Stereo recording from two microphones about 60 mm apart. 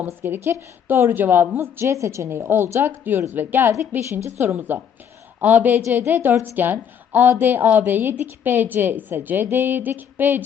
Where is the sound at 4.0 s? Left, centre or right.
Right.